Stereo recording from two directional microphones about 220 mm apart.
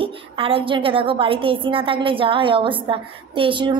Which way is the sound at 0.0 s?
25° right (ahead or behind).